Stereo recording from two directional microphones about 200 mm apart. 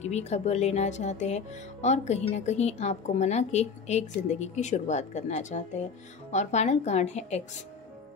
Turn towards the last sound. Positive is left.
turn(degrees=35)  # may be behind; listen again after turning